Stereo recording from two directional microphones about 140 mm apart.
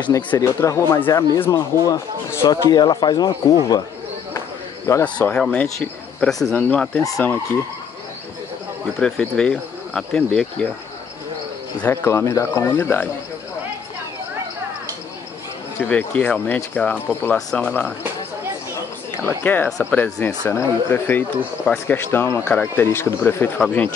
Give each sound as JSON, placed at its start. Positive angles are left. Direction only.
{"t": 0.3, "sound": "speech", "side_deg": 20}
{"t": 4.9, "sound": "speech", "side_deg": 25}
{"t": 5.4, "sound": "speech", "side_deg": 5}
{"t": 9.0, "sound": "speech", "side_deg": 5}
{"t": 11.8, "sound": "speech", "side_deg": 15}
{"t": 15.8, "sound": "speech", "side_deg": 10}
{"t": 19.2, "sound": "speech", "side_deg": 15}